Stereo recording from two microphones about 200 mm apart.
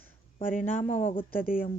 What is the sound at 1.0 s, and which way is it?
Speech, 25° left (ahead or behind).